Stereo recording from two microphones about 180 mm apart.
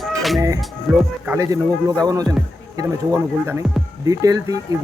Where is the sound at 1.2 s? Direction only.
15° right (ahead or behind).